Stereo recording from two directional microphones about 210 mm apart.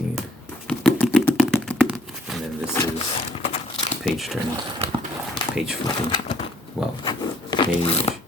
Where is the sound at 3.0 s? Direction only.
30° left (ahead or behind).